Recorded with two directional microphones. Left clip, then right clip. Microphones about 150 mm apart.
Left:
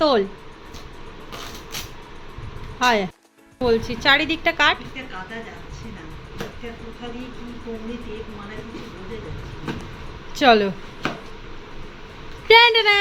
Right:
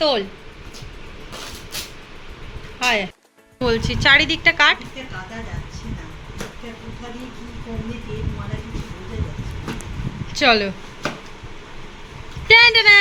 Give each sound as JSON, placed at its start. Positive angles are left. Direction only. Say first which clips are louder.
{"t": 0.0, "sound": "speech", "louder": "left 1 dB", "side_deg": 45}
{"t": 2.7, "sound": "speech", "louder": "left 1 dB", "side_deg": 40}
{"t": 3.6, "sound": "a woman's voice", "louder": "right 1 dB", "side_deg": 0}
{"t": 10.3, "sound": "speech", "louder": "left 1 dB", "side_deg": 20}
{"t": 12.5, "sound": "a woman's voice", "louder": "right 3 dB", "side_deg": 15}